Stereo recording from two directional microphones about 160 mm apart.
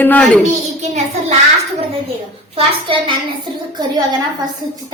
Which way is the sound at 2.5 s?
35° right (ahead or behind).